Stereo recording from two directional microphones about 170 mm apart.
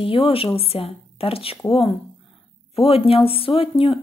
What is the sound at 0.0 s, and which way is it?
Speech, 30° left (ahead or behind).